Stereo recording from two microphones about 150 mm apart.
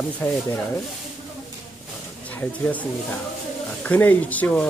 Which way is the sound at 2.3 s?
10° left (ahead or behind).